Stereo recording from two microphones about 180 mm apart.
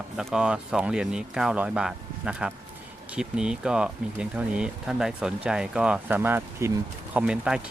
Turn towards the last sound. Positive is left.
turn(degrees=-5)  # may be behind; listen again after turning